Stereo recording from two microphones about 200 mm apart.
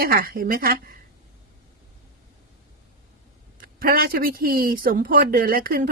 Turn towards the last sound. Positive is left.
turn(degrees=-45)  # may be behind; listen again after turning